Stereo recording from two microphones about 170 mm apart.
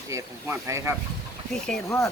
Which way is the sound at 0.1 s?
15° right (ahead or behind).